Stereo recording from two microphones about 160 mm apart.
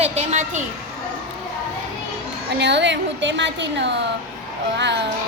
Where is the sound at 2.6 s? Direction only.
90° right.